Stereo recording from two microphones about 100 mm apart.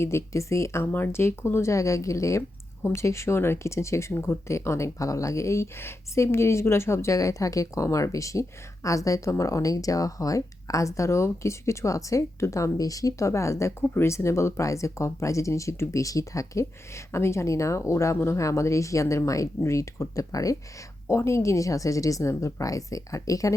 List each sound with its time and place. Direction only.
0.0 s speech: 25° left (ahead or behind)